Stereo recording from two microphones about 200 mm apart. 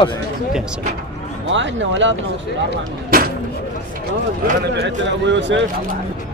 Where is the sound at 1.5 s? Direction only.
65° right (ahead or behind).